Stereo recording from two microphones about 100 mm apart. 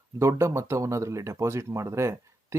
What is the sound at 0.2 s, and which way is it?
Speech, 30° right (ahead or behind).